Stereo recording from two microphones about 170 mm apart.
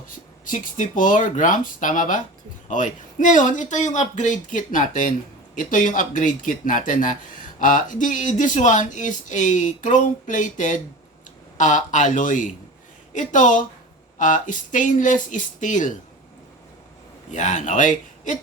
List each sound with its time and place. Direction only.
0.4 s speech: 50° left (ahead or behind)
17.3 s speech: 45° left (ahead or behind)